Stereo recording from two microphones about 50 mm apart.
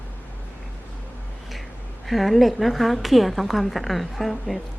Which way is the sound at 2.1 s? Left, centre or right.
Centre.